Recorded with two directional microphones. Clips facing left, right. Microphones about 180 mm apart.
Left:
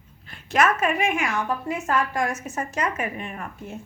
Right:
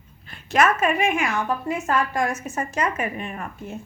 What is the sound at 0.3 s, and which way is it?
A woman's voice, 25° right (ahead or behind).